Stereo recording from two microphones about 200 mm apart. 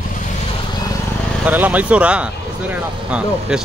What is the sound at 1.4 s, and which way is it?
Speech, 10° right (ahead or behind).